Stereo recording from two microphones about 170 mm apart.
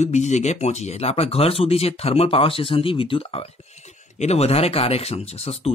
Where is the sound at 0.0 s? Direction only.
45° left (ahead or behind).